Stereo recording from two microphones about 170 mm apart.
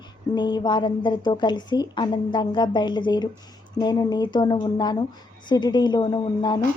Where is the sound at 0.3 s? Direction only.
25° left (ahead or behind).